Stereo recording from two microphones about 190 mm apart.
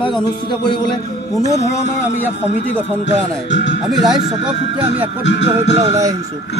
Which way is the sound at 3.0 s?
70° left (ahead or behind).